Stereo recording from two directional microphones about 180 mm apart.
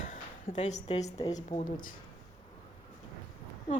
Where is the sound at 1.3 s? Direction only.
40° left (ahead or behind).